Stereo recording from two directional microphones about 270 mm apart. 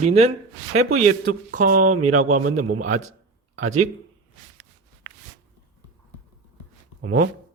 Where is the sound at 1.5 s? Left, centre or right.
Right.